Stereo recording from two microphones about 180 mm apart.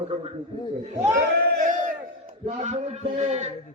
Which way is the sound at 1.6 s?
45° right (ahead or behind).